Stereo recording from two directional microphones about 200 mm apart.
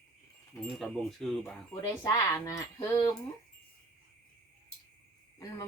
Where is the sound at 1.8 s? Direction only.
20° left (ahead or behind).